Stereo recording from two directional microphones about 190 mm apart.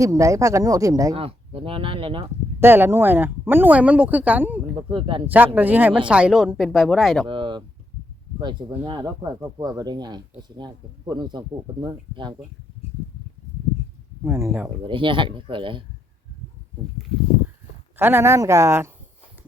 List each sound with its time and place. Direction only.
0.0 s speech: 15° right (ahead or behind)
1.1 s speech: 30° right (ahead or behind)
2.6 s speech: 10° right (ahead or behind)
4.9 s speech: 25° right (ahead or behind)
5.5 s speech: 10° right (ahead or behind)
7.3 s speech: 25° right (ahead or behind)
14.3 s speech: 15° right (ahead or behind)
14.8 s speech: 25° right (ahead or behind)
17.9 s speech: 10° right (ahead or behind)